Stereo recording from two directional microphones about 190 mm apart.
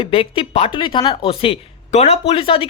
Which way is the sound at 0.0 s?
30° left (ahead or behind).